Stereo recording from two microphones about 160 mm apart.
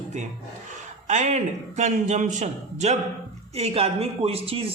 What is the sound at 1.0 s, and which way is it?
A man's voice, 45° right (ahead or behind).